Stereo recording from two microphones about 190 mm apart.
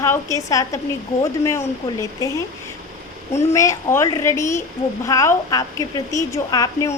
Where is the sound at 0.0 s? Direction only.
15° left (ahead or behind).